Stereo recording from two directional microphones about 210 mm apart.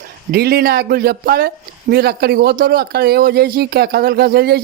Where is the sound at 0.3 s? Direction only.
50° right (ahead or behind).